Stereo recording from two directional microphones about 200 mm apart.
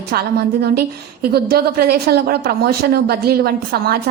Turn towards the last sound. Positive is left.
turn(degrees=-50)  # may be behind; listen again after turning